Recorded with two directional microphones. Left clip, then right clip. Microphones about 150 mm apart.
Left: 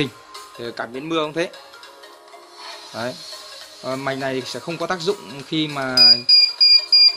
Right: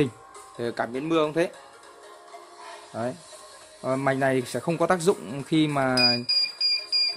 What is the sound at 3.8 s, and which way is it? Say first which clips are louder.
Speech: even; 25° right (ahead or behind).